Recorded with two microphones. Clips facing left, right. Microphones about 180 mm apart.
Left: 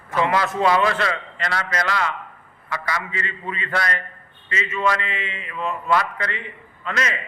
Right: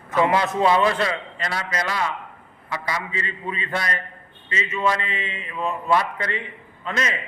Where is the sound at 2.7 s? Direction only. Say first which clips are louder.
Even; 20° right (ahead or behind).